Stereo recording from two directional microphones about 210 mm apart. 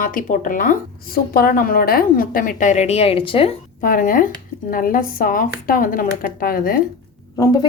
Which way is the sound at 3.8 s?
40° left (ahead or behind).